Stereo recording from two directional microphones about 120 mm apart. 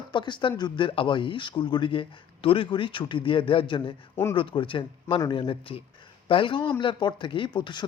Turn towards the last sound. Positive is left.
turn(degrees=40)  # may be behind; listen again after turning